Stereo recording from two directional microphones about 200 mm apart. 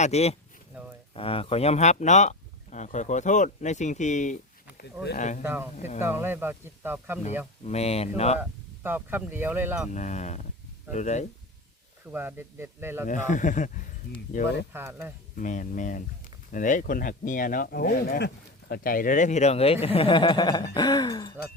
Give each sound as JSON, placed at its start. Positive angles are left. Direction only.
{"t": 0.0, "sound": "speech", "side_deg": 30}
{"t": 0.7, "sound": "a sound", "side_deg": -5}
{"t": 1.1, "sound": "speech", "side_deg": 30}
{"t": 5.4, "sound": "speech", "side_deg": -10}
{"t": 5.7, "sound": "speech", "side_deg": 35}
{"t": 6.0, "sound": "speech", "side_deg": -10}
{"t": 7.6, "sound": "speech", "side_deg": 30}
{"t": 8.4, "sound": "speech", "side_deg": -10}
{"t": 9.9, "sound": "speech", "side_deg": 35}
{"t": 12.1, "sound": "speech", "side_deg": -10}
{"t": 13.1, "sound": "speech", "side_deg": 40}
{"t": 14.7, "sound": "speech", "side_deg": -10}
{"t": 15.4, "sound": "speech", "side_deg": 40}